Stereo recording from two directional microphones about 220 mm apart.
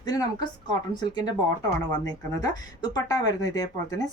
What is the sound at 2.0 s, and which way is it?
Speech, 15° left (ahead or behind).